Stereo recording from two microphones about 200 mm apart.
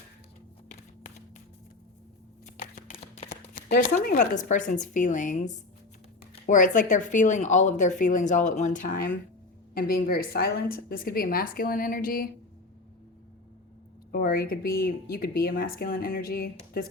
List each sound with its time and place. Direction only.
2.6 s shuffling cards: 35° left (ahead or behind)
3.5 s speech: 40° left (ahead or behind)
14.1 s speech: 50° left (ahead or behind)